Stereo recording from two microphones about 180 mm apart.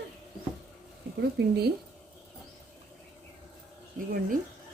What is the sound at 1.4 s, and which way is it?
Speech, 70° right (ahead or behind).